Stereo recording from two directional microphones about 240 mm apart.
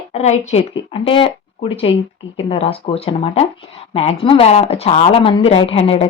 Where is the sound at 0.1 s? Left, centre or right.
Left.